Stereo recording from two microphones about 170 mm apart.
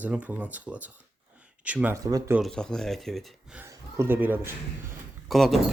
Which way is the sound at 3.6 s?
15° right (ahead or behind).